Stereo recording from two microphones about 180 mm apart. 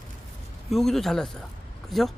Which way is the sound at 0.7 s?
Centre (ahead or behind).